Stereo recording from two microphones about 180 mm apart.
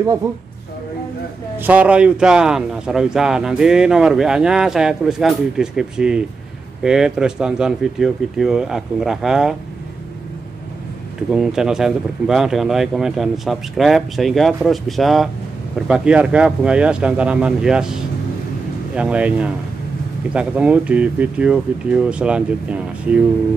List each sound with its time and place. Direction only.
0.2 s speech: 20° right (ahead or behind)
1.6 s speech: 10° right (ahead or behind)
11.3 s speech: 5° right (ahead or behind)